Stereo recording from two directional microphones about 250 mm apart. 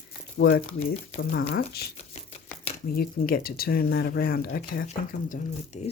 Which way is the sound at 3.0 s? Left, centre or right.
Left.